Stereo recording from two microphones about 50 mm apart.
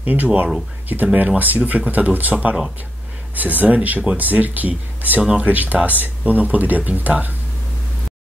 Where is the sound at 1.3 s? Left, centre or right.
Right.